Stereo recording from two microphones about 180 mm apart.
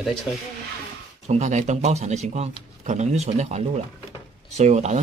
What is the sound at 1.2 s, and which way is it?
Speech, 40° right (ahead or behind).